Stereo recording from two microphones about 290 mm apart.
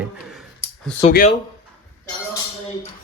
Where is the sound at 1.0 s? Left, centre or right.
Left.